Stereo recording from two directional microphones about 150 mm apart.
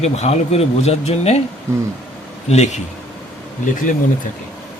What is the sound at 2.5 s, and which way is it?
Speech, 50° left (ahead or behind).